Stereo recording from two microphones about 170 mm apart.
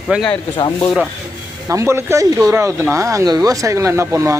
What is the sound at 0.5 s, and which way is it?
Speech, 25° left (ahead or behind).